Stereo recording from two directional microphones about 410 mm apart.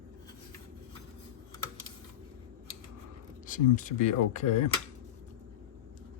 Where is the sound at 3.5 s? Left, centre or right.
Centre.